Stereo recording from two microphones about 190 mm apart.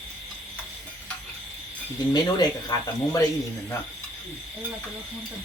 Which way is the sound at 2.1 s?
20° left (ahead or behind).